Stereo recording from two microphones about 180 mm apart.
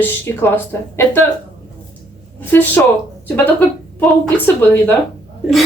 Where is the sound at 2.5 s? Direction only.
10° left (ahead or behind).